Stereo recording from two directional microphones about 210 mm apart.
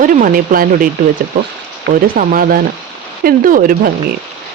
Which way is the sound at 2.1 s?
45° right (ahead or behind).